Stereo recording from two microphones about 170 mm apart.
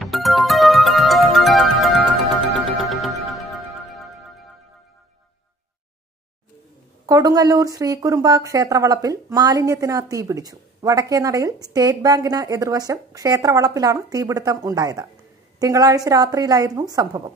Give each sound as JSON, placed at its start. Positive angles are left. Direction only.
{"t": 0.0, "sound": "music", "side_deg": 0}
{"t": 7.1, "sound": "speech", "side_deg": -20}